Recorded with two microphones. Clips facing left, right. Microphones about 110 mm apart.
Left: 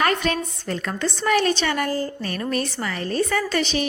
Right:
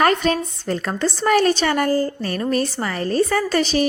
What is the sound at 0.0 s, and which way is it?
A woman's voice, 35° right (ahead or behind).